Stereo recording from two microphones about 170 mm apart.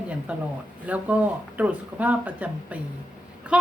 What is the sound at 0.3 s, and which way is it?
A woman's voice, 5° right (ahead or behind).